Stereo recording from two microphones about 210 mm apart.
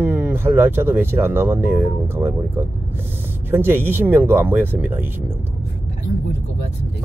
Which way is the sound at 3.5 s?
10° right (ahead or behind).